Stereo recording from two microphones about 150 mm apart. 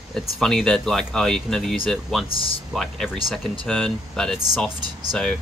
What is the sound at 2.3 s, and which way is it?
Speech, 35° left (ahead or behind).